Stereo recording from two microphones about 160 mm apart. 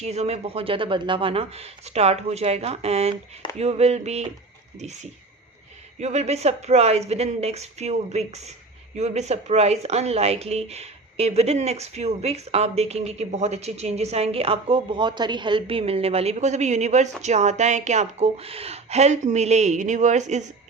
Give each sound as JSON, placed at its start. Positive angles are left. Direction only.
{"t": 0.0, "sound": "speech", "side_deg": -40}
{"t": 6.0, "sound": "a woman's voice", "side_deg": -45}